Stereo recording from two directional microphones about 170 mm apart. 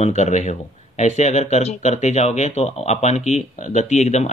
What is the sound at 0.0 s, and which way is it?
Speech, 40° left (ahead or behind).